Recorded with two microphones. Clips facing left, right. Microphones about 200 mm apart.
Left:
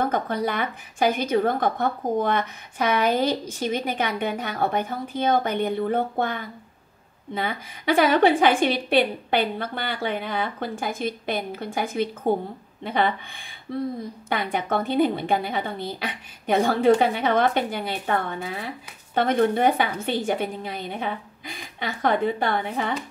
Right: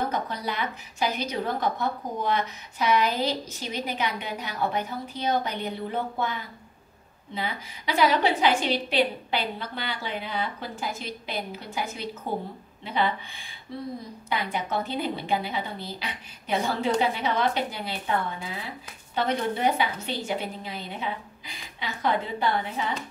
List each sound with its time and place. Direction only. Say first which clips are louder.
0.0 s a woman's voice: left 5 dB; 50° left (ahead or behind)